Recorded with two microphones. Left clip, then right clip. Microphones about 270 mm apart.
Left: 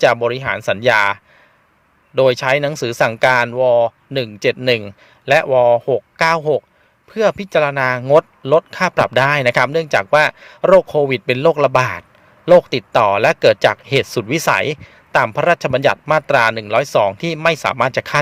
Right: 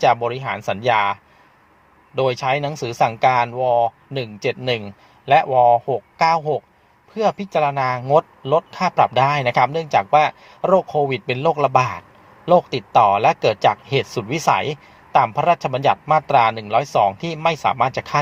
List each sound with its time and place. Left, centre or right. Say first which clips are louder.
0.0 s speech: left 3 dB; left